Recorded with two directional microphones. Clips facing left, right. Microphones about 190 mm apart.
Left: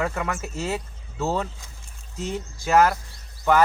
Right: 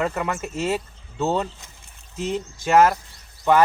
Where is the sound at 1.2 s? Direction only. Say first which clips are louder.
Right 3 dB; 20° right (ahead or behind).